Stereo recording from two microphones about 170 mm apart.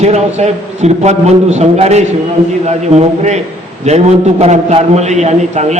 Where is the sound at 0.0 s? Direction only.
40° right (ahead or behind).